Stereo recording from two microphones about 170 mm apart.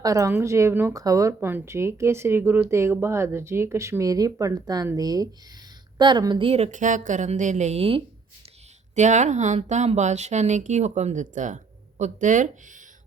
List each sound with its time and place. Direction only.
0.0 s a woman's voice: 20° right (ahead or behind); by 8.0 s 35° right (ahead or behind)
9.0 s speech: 45° right (ahead or behind)